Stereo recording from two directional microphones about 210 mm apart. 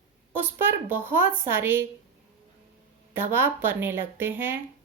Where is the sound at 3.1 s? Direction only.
10° right (ahead or behind).